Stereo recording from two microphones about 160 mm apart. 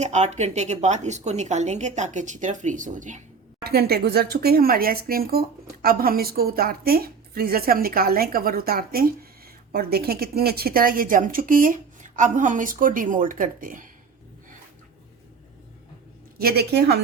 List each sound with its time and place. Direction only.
0.0 s speech: 45° right (ahead or behind)
3.6 s a woman's voice: 80° right; by 13.9 s 55° right (ahead or behind)
16.4 s a woman's voice: 80° right